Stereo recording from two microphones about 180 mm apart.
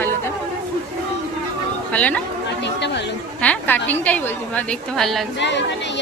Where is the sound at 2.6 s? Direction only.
75° left (ahead or behind).